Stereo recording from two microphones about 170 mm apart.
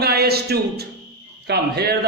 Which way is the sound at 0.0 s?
65° right (ahead or behind).